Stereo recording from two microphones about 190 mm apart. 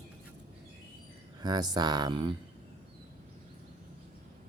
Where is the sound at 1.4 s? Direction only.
20° right (ahead or behind).